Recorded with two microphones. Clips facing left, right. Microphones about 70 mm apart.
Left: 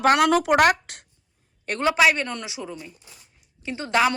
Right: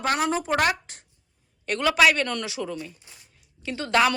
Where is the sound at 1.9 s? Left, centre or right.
Left.